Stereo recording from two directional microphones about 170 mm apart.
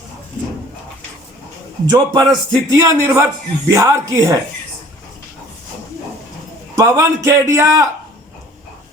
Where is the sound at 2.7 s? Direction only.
20° right (ahead or behind).